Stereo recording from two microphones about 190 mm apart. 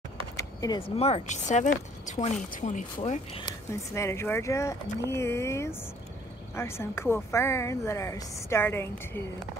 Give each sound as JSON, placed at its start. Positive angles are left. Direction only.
{"t": 0.4, "sound": "speech", "side_deg": 20}
{"t": 3.0, "sound": "speech", "side_deg": 30}
{"t": 3.7, "sound": "a woman's voice", "side_deg": 15}